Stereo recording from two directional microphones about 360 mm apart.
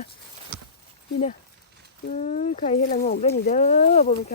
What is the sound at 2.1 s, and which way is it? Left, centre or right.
Speech, centre.